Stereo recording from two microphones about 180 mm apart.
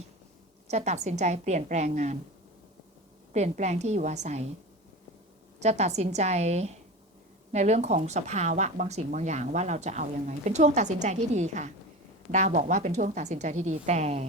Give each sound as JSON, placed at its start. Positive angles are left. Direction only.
{"t": 0.7, "sound": "speech", "side_deg": -40}
{"t": 3.3, "sound": "speech", "side_deg": -40}
{"t": 5.5, "sound": "speech", "side_deg": -40}